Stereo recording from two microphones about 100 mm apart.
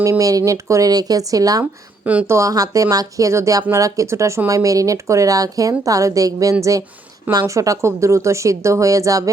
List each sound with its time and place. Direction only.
0.0 s speech: 35° right (ahead or behind)